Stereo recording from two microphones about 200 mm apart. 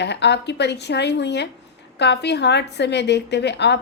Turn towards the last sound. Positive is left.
turn(degrees=60)  # may be behind; listen again after turning